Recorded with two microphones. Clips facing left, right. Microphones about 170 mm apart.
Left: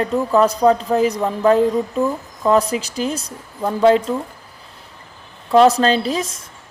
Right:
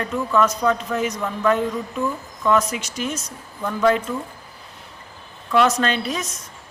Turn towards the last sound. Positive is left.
turn(degrees=30)  # may be behind; listen again after turning